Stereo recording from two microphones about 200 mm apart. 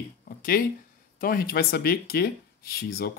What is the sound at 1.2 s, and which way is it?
Speech, 45° left (ahead or behind).